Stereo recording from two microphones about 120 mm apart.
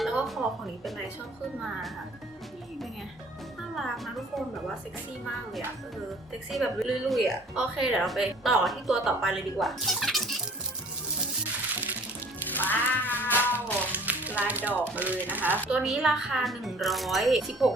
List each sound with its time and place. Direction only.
0.0 s music: centre (ahead or behind)
3.8 s a woman's voice: centre (ahead or behind)
6.5 s a woman's voice: centre (ahead or behind)
12.5 s music: 15° left (ahead or behind)
13.5 s speech: 15° right (ahead or behind)
15.7 s a woman's voice: 5° right (ahead or behind)